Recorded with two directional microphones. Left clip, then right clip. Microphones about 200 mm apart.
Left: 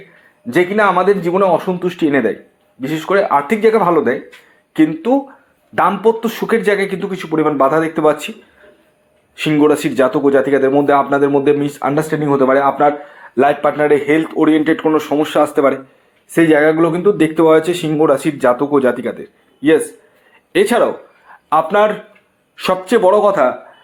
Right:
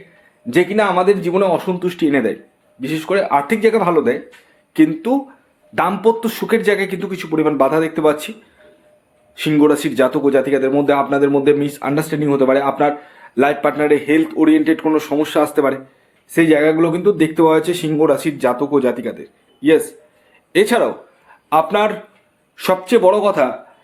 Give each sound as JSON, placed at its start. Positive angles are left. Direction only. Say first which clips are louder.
{"t": 0.5, "sound": "speech", "louder": "left 2 dB", "side_deg": 0}
{"t": 9.3, "sound": "speech", "louder": "left 1 dB", "side_deg": 0}